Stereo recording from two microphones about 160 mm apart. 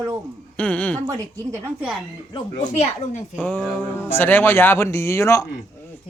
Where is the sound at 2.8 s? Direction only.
45° left (ahead or behind).